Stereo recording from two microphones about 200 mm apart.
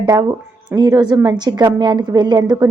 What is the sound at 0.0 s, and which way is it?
A woman's voice, 20° right (ahead or behind).